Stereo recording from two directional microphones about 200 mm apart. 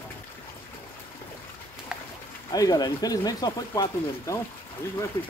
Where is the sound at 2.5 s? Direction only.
20° left (ahead or behind).